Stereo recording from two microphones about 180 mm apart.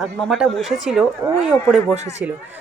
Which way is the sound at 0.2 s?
Centre (ahead or behind).